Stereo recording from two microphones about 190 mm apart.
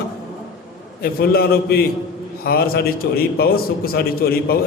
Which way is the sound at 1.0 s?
55° left (ahead or behind).